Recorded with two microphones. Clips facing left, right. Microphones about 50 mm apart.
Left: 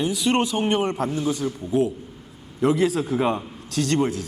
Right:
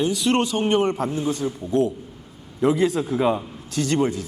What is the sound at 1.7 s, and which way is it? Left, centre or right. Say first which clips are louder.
A man's voice: right 1 dB; centre.